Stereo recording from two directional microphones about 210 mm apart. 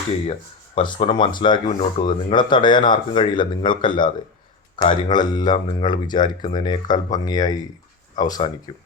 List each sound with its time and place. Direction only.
0.8 s speech: 25° left (ahead or behind)